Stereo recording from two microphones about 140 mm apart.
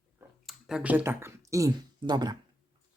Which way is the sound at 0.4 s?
5° right (ahead or behind).